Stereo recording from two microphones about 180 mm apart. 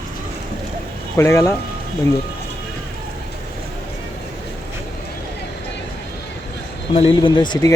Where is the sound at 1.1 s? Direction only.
15° left (ahead or behind).